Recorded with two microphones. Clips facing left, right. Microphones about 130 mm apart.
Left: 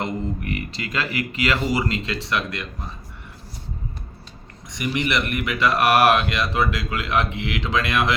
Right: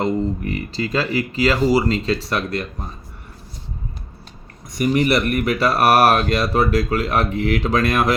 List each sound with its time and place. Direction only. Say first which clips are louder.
0.0 s speech: right 6 dB; 35° right (ahead or behind)
4.7 s speech: right 7 dB; 40° right (ahead or behind)